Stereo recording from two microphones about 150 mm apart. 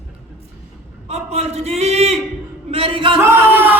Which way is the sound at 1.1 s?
45° right (ahead or behind).